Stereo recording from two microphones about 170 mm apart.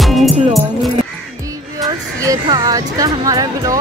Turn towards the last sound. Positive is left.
turn(degrees=-20)  # may be behind; listen again after turning